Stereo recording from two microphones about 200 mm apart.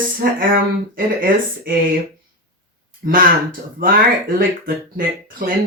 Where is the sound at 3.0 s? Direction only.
45° right (ahead or behind).